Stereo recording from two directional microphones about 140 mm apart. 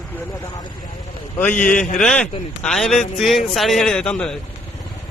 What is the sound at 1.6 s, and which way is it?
A man's voice, 10° left (ahead or behind).